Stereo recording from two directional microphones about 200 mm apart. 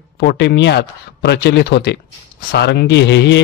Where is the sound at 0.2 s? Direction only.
55° left (ahead or behind).